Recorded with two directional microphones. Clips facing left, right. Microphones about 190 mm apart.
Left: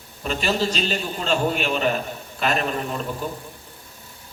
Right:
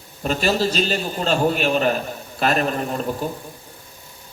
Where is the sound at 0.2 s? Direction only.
40° right (ahead or behind).